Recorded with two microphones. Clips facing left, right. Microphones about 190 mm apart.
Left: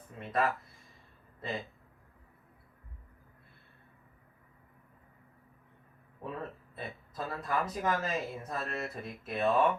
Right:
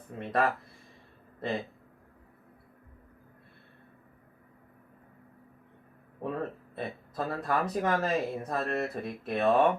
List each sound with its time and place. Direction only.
0.2 s speech: 35° right (ahead or behind)
6.2 s speech: 50° right (ahead or behind)